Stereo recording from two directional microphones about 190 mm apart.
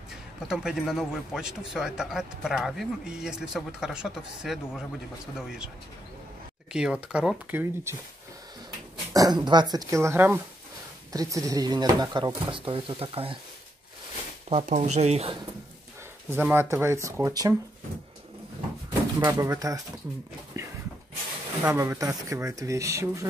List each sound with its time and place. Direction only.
0.1 s a man's voice: 5° right (ahead or behind)
6.7 s speech: 5° right (ahead or behind)
9.1 s speech: 20° right (ahead or behind)
14.5 s speech: 35° right (ahead or behind)
16.3 s speech: 10° right (ahead or behind)
19.1 s speech: 15° right (ahead or behind)
20.5 s a sound: 15° right (ahead or behind)
21.6 s speech: 15° right (ahead or behind)